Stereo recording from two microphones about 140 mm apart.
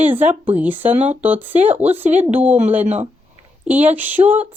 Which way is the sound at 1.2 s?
10° right (ahead or behind).